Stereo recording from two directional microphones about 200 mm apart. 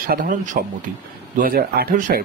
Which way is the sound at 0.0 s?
45° right (ahead or behind).